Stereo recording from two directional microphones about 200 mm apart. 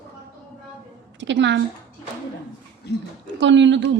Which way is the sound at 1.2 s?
65° right (ahead or behind).